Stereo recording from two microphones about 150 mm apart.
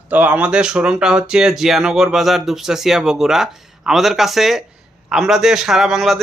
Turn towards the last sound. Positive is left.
turn(degrees=0)  # may be behind; listen again after turning